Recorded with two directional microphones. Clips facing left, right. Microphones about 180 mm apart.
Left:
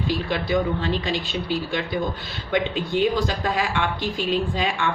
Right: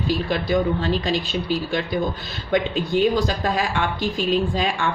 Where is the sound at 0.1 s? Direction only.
40° right (ahead or behind).